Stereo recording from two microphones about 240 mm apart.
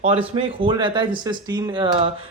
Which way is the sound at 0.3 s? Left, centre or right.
Centre.